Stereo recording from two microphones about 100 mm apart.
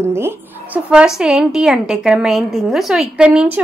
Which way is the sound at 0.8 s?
10° right (ahead or behind).